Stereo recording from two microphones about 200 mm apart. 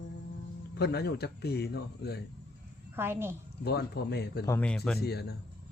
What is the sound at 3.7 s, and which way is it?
Speech, 55° left (ahead or behind).